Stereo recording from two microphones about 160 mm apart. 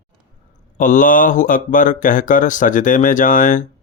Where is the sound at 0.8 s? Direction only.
55° left (ahead or behind).